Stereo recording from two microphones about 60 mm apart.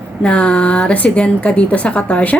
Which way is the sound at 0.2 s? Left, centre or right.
Centre.